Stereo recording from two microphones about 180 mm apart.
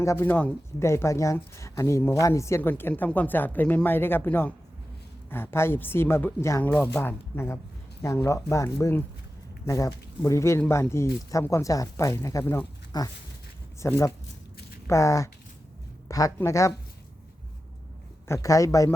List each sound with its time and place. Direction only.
0.0 s speech: 15° left (ahead or behind)
18.3 s speech: 20° left (ahead or behind)